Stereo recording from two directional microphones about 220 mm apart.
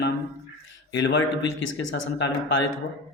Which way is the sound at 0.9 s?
55° left (ahead or behind).